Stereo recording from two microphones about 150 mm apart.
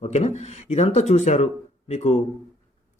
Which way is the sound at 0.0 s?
45° left (ahead or behind).